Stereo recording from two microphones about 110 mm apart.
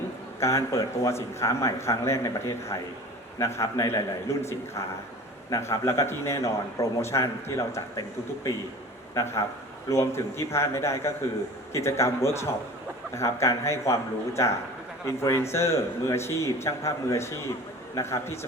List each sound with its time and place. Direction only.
0.3 s a man's voice: 25° left (ahead or behind)
9.1 s a man's voice: 25° left (ahead or behind)